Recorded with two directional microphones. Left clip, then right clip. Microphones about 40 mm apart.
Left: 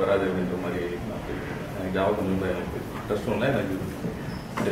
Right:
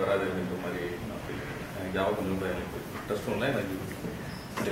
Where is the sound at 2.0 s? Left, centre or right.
Centre.